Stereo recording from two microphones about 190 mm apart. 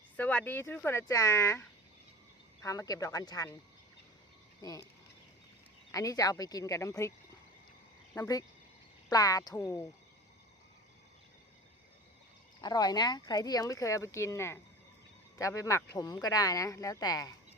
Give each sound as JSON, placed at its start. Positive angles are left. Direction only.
{"t": 0.2, "sound": "speech", "side_deg": 10}
{"t": 4.6, "sound": "speech", "side_deg": 20}
{"t": 5.9, "sound": "speech", "side_deg": 20}
{"t": 8.1, "sound": "speech", "side_deg": 20}
{"t": 12.6, "sound": "speech", "side_deg": 20}